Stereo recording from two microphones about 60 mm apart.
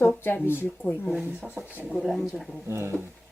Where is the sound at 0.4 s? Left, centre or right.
Left.